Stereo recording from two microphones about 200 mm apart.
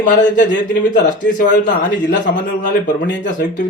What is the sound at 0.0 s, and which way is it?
A man's voice, 40° left (ahead or behind).